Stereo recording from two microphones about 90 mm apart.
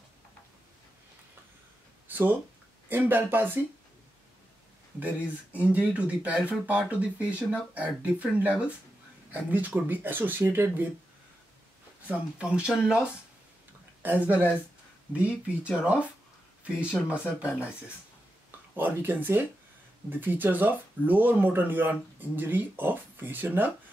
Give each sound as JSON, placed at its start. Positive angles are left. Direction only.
{"t": 2.0, "sound": "a sound", "side_deg": -20}
{"t": 2.9, "sound": "speech", "side_deg": -25}
{"t": 5.0, "sound": "speech", "side_deg": -15}
{"t": 12.1, "sound": "speech", "side_deg": -15}
{"t": 14.0, "sound": "speech", "side_deg": -20}
{"t": 15.2, "sound": "speech", "side_deg": 20}
{"t": 15.7, "sound": "speech", "side_deg": -10}
{"t": 16.9, "sound": "speech", "side_deg": 20}
{"t": 18.8, "sound": "speech", "side_deg": -20}